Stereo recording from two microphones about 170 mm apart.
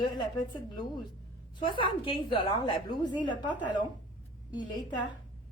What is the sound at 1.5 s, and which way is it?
A woman's voice, 30° left (ahead or behind).